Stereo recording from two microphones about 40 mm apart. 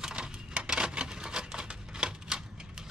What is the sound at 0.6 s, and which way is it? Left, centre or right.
Typewriter, right.